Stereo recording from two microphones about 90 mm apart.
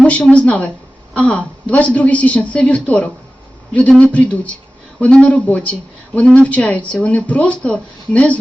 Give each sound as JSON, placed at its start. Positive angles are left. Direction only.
{"t": 0.0, "sound": "speech", "side_deg": 15}